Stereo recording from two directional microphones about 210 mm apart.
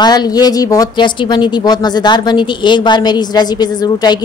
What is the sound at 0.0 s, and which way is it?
A woman's voice, 20° left (ahead or behind).